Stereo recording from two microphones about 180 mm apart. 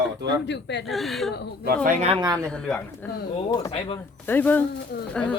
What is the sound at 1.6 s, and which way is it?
Speech, 50° right (ahead or behind).